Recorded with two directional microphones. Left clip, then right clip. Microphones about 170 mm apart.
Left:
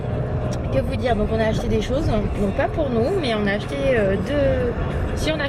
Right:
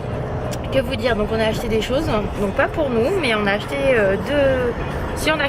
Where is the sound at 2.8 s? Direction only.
90° left.